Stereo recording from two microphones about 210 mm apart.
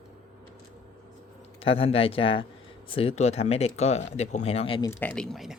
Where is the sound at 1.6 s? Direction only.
25° left (ahead or behind).